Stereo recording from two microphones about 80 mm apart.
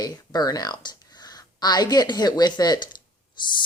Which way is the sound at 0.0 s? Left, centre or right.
Left.